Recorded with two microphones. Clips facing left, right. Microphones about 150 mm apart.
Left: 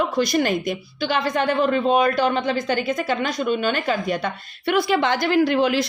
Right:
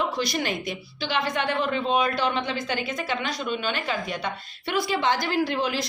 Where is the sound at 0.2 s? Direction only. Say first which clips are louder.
Left 7 dB; 45° left (ahead or behind).